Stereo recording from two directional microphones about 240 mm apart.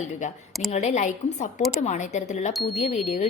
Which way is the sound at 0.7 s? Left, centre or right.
Left.